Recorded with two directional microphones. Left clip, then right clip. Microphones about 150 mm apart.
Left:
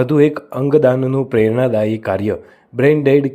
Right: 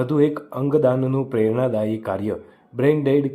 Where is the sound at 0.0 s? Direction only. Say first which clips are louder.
Left 6 dB; 35° left (ahead or behind).